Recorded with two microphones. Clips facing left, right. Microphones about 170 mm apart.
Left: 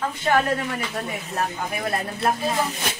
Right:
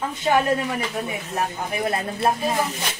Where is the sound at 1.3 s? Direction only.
20° right (ahead or behind).